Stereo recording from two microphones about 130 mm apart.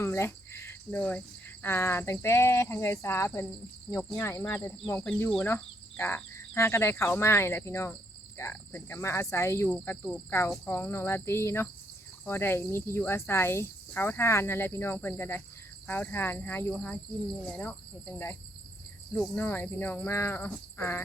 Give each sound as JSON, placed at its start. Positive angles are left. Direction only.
{"t": 0.0, "sound": "cricket", "side_deg": 20}
{"t": 1.6, "sound": "speech", "side_deg": 20}